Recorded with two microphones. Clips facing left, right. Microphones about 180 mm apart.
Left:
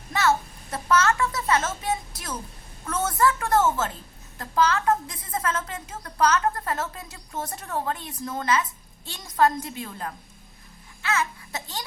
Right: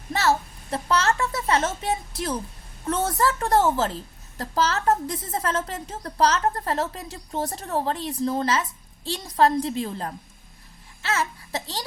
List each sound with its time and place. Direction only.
0.1 s a woman's voice: 35° right (ahead or behind)